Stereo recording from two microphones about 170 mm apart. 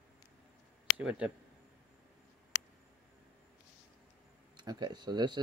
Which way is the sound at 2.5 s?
35° left (ahead or behind).